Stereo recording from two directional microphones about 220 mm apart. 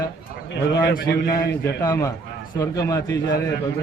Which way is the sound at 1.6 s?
15° left (ahead or behind).